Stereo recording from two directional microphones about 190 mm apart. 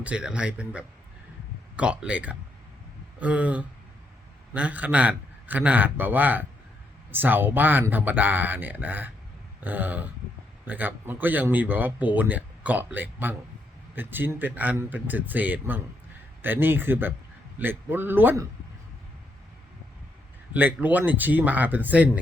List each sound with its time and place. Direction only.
0.0 s speech: 5° right (ahead or behind)
9.6 s a sound: 10° right (ahead or behind)
10.7 s speech: 10° right (ahead or behind)
20.5 s speech: 10° right (ahead or behind)